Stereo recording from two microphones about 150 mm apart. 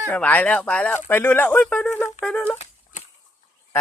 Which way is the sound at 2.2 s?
5° left (ahead or behind).